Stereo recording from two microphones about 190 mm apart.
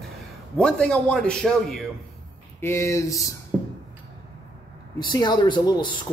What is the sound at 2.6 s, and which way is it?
Speech, 15° left (ahead or behind).